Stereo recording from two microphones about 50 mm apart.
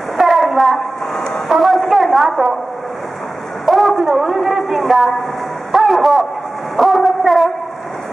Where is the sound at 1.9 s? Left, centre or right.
Centre.